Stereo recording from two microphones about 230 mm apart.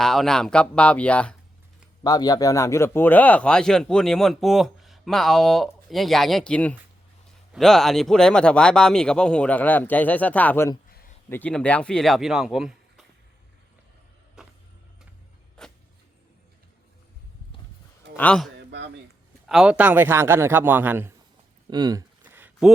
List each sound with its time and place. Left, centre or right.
0.0 s speech: centre
2.0 s speech: centre
10.8 s a sound: left
11.3 s speech: centre
15.6 s vehicle: centre
18.2 s a man's voice: centre
22.2 s a sound: centre